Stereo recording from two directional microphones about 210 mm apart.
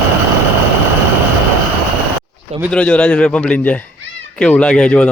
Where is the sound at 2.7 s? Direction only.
5° left (ahead or behind).